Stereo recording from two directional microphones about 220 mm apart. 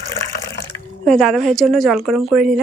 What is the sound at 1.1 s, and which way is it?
Speech, centre (ahead or behind).